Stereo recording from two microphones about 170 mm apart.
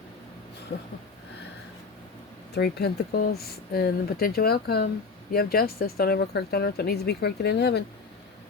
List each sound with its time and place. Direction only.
2.6 s speech: 70° left (ahead or behind)